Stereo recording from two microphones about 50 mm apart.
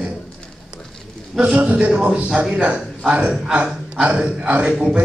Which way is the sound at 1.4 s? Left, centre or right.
Right.